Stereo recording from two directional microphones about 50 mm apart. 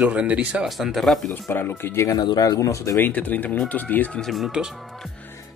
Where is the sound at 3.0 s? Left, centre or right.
Left.